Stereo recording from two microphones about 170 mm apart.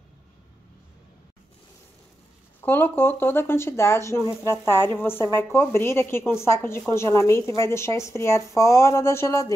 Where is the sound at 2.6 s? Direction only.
10° left (ahead or behind).